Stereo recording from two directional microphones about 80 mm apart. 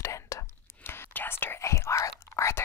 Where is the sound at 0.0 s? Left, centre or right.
Left.